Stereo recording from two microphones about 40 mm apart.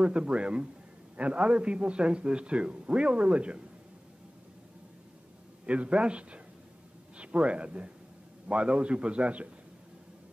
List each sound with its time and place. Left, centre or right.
0.0 s a man's voice: right
5.7 s a man's voice: right